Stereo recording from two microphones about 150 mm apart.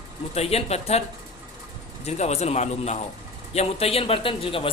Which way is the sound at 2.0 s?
45° left (ahead or behind).